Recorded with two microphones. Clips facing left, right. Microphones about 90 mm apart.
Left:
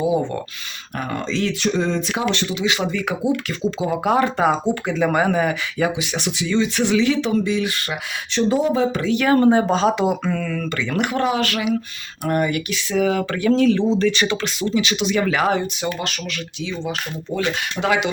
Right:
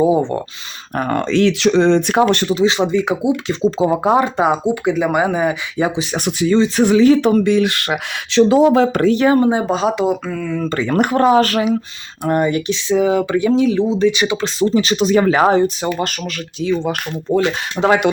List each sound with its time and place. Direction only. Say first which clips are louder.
0.0 s speech: right 6 dB; 30° right (ahead or behind)
0.9 s speech: right 8 dB; 50° right (ahead or behind)
2.2 s speech: right 7 dB; 45° right (ahead or behind); by 6.1 s 25° right (ahead or behind)
6.1 s speech: right 8 dB; 45° right (ahead or behind); by 9.0 s 75° right (ahead or behind)
9.3 s speech: even; 10° right (ahead or behind)
10.6 s speech: right 6 dB; 40° right (ahead or behind)
12.2 s speech: right 4 dB; 25° right (ahead or behind)
14.4 s speech: right 6 dB; 35° right (ahead or behind)